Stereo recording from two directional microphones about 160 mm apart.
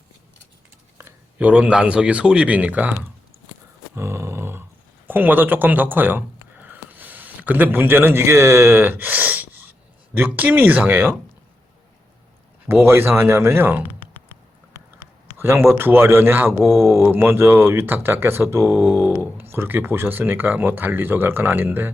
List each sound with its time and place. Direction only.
0.9 s speech: 10° right (ahead or behind)
3.9 s a sound: 15° right (ahead or behind)
5.0 s speech: 10° right (ahead or behind)
12.6 s speech: 15° right (ahead or behind)
15.4 s speech: 15° right (ahead or behind)